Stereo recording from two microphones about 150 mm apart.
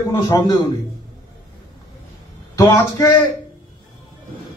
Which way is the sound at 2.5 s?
20° left (ahead or behind).